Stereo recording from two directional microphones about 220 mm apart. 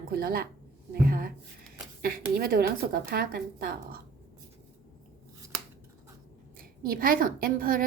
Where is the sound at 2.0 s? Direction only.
40° right (ahead or behind).